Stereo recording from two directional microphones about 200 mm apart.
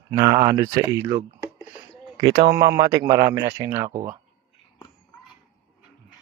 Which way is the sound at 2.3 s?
50° right (ahead or behind).